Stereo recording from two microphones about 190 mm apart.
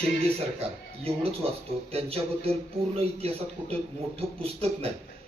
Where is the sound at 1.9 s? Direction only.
30° right (ahead or behind).